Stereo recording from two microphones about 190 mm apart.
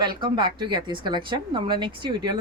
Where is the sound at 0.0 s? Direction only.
25° right (ahead or behind).